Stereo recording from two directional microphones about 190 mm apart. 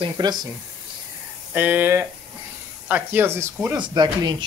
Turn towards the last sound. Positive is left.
turn(degrees=-20)  # may be behind; listen again after turning